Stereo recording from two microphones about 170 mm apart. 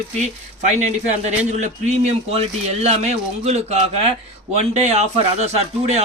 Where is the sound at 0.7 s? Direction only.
40° right (ahead or behind).